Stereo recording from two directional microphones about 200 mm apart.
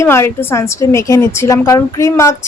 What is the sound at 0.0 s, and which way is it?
Speech, 10° left (ahead or behind).